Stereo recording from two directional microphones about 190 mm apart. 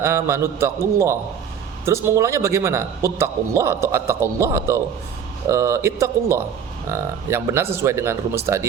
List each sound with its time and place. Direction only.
0.0 s a man's voice: 15° right (ahead or behind)